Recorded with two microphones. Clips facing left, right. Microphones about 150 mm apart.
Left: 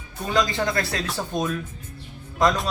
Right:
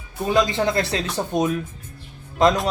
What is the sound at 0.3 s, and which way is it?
Speech, 20° right (ahead or behind).